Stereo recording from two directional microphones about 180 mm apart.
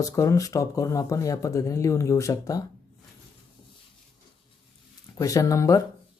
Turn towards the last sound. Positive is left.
turn(degrees=20)  # may be behind; listen again after turning